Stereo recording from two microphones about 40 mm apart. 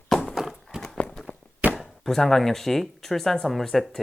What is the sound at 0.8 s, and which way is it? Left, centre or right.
Walk, left.